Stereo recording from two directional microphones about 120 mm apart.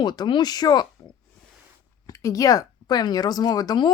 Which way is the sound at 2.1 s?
25° left (ahead or behind).